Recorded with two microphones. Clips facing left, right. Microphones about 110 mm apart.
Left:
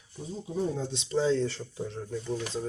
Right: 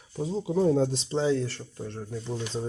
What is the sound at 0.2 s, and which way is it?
Speech, 90° right.